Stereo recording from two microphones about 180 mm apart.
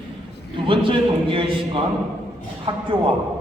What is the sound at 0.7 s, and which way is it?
Speech, 30° right (ahead or behind).